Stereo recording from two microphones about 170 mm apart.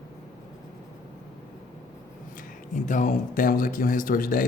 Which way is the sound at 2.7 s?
50° left (ahead or behind).